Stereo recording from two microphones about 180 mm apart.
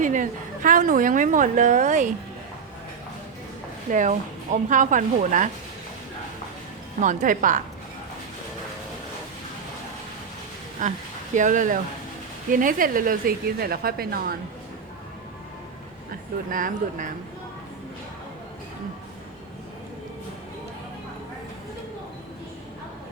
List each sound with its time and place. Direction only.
0.0 s a woman's voice: 45° right (ahead or behind)
3.8 s a woman's voice: 45° right (ahead or behind)
7.0 s a woman's voice: 45° right (ahead or behind)
10.8 s a woman's voice: 45° right (ahead or behind)
16.5 s a woman's voice: 50° right (ahead or behind)